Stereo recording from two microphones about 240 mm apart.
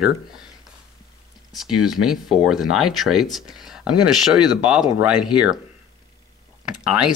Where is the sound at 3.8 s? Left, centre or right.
Left.